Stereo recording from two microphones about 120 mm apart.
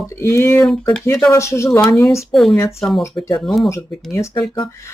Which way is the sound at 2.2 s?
Centre (ahead or behind).